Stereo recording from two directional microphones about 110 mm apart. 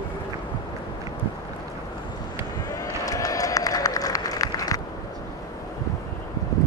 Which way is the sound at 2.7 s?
30° left (ahead or behind).